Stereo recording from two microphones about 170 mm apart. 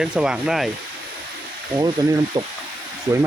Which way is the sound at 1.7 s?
20° right (ahead or behind).